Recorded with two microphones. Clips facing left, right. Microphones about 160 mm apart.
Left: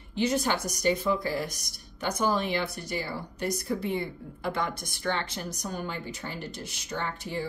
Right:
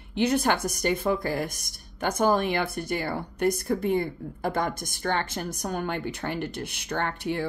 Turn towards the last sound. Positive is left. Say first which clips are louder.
# right 4 dB
turn(degrees=-65)  # may be behind; listen again after turning